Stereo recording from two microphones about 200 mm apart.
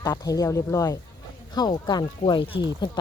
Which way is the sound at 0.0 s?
20° left (ahead or behind).